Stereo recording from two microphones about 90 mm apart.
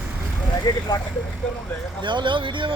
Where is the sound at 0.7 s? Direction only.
45° left (ahead or behind).